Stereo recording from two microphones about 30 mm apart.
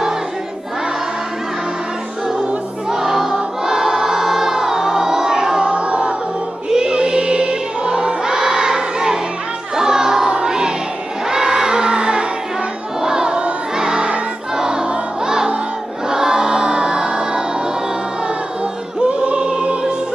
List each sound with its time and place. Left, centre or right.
2.9 s choir: centre
5.6 s choir: right
6.7 s music: right
11.2 s choir: right
13.0 s crowd: right
13.7 s choir: right
14.6 s music: right
18.9 s choir: right